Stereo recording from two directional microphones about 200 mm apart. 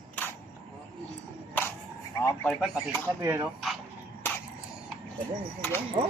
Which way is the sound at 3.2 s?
15° right (ahead or behind).